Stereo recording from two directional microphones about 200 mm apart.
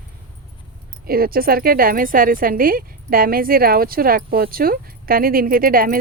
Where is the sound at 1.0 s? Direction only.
50° right (ahead or behind).